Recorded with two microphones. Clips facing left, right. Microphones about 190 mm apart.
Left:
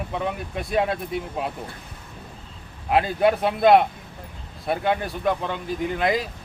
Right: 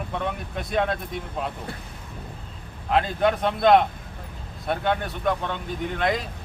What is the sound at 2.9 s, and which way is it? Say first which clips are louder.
A man's voice: left 2 dB; 5° left (ahead or behind).